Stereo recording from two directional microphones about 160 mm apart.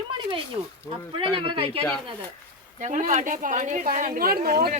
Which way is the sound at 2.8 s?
55° right (ahead or behind).